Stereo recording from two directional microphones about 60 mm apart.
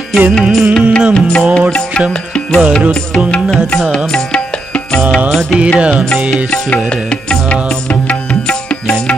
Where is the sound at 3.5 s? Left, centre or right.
Centre.